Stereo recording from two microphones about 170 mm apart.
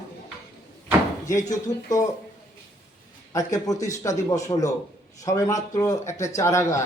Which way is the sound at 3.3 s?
20° left (ahead or behind).